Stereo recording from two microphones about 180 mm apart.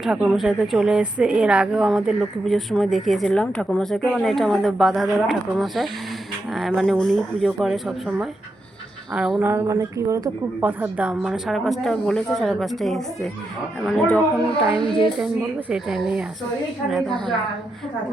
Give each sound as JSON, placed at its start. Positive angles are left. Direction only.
{"t": 0.0, "sound": "speech", "side_deg": 0}
{"t": 9.5, "sound": "speech", "side_deg": -15}
{"t": 14.8, "sound": "a woman's voice", "side_deg": 30}
{"t": 15.7, "sound": "speech", "side_deg": -5}